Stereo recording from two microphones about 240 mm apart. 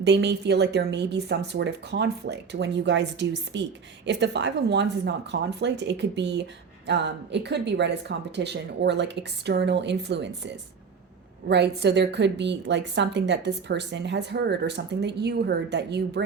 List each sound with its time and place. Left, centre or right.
0.0 s a woman's voice: right